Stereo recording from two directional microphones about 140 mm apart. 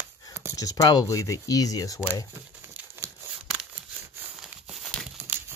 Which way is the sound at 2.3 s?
20° right (ahead or behind).